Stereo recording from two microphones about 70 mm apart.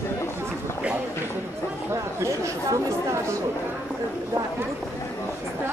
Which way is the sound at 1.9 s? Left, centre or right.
Right.